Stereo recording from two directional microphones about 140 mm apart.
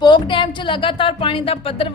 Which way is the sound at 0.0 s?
35° left (ahead or behind).